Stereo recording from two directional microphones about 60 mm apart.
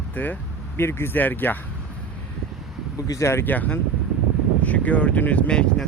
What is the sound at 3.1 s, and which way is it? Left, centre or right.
Speech, left.